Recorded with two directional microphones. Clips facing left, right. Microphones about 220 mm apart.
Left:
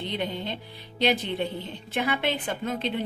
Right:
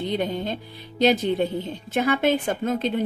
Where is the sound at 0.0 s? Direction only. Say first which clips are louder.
Right 5 dB; 45° right (ahead or behind).